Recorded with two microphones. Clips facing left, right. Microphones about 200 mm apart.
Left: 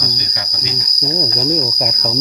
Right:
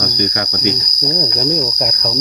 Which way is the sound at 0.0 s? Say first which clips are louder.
Right 8 dB; 55° right (ahead or behind).